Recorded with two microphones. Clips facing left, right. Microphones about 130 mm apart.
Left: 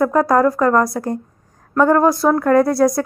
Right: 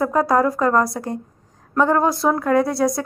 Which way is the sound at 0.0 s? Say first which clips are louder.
Left 3 dB; 20° right (ahead or behind).